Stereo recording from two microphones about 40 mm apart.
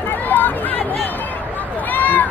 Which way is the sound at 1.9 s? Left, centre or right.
Left.